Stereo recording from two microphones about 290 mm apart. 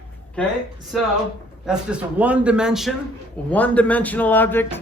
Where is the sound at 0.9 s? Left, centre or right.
Centre.